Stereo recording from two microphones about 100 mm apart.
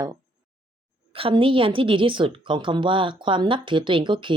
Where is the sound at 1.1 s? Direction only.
65° right (ahead or behind).